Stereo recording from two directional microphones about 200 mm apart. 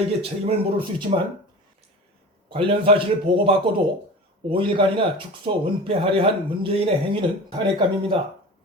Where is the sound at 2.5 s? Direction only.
25° right (ahead or behind).